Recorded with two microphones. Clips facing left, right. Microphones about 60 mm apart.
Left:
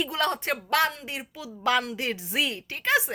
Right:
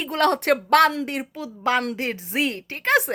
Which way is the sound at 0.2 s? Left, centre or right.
Right.